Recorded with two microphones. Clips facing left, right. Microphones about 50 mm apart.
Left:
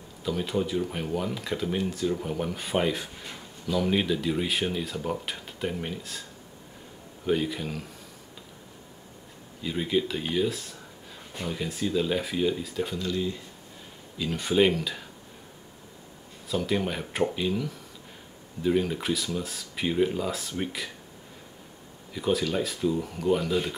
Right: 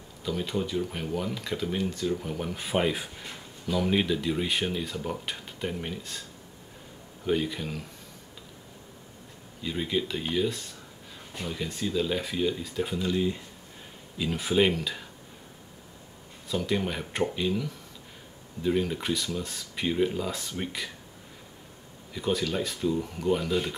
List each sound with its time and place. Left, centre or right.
0.2 s speech: centre
7.2 s speech: centre
9.6 s speech: centre
12.9 s speech: centre
14.1 s speech: centre
16.4 s speech: centre
22.1 s speech: centre